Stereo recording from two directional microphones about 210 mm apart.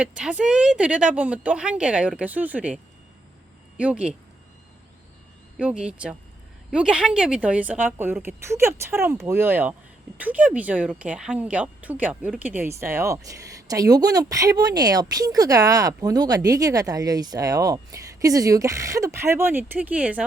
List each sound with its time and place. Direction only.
0.0 s speech: 5° right (ahead or behind)
5.5 s a woman's voice: 5° right (ahead or behind)